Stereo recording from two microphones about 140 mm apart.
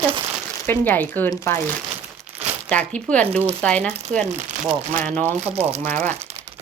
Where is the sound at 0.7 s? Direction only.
15° left (ahead or behind).